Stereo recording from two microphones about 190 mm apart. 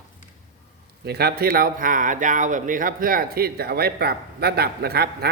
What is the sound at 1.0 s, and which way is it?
Speech, 55° right (ahead or behind).